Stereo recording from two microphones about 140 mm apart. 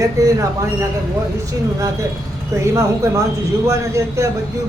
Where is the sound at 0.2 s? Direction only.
25° right (ahead or behind).